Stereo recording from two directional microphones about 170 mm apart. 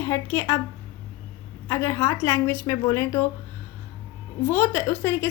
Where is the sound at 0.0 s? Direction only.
15° left (ahead or behind).